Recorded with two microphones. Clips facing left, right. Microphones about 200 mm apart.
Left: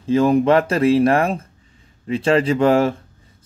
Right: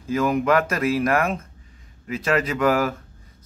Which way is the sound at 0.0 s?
30° left (ahead or behind).